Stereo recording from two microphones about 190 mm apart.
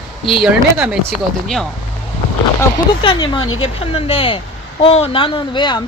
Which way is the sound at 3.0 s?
25° left (ahead or behind).